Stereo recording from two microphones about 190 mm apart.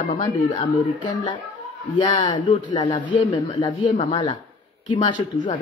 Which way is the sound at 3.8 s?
40° left (ahead or behind).